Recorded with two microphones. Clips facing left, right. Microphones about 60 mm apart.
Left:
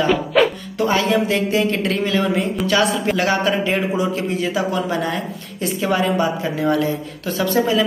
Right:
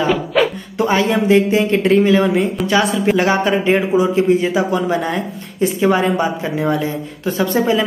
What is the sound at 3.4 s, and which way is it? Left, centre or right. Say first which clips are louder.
A woman's voice: right 4 dB; right.